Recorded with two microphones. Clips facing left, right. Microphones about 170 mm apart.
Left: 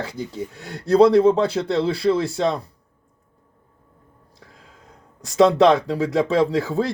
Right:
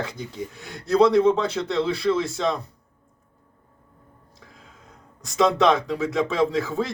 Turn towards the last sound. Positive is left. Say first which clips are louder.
# left 3 dB
turn(degrees=35)  # may be behind; listen again after turning